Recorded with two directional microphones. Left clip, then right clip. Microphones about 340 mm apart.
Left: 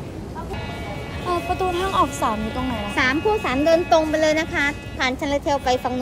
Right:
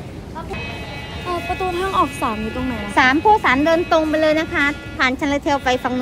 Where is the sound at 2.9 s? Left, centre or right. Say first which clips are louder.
Right 7 dB; centre.